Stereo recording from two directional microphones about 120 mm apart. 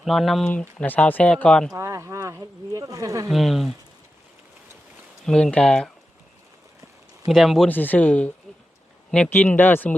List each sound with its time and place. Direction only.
0.0 s speech: centre (ahead or behind)
0.4 s speech: 15° left (ahead or behind)
1.7 s speech: 25° right (ahead or behind)
3.2 s speech: centre (ahead or behind)
5.2 s speech: 5° left (ahead or behind)
7.3 s speech: centre (ahead or behind)
7.7 s speech: 15° left (ahead or behind)